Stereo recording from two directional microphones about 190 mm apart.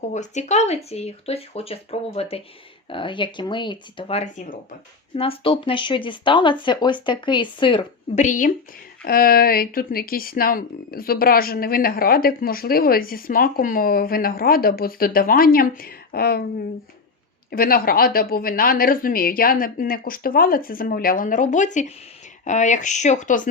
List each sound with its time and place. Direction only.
0.1 s speech: 40° left (ahead or behind)
8.1 s speech: 40° left (ahead or behind)
17.5 s speech: 50° left (ahead or behind)